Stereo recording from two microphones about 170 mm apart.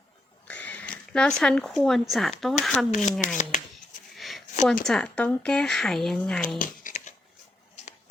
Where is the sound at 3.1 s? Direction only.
50° left (ahead or behind).